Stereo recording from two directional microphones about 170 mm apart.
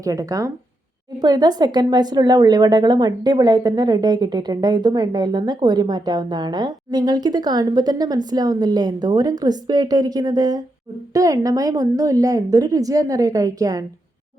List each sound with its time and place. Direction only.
0.0 s a woman's voice: 20° right (ahead or behind)